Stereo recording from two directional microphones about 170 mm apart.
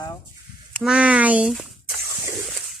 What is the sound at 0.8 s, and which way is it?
Speech, 5° right (ahead or behind).